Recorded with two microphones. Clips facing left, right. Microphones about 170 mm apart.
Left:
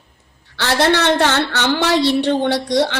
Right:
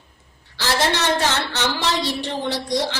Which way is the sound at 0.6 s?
65° left (ahead or behind).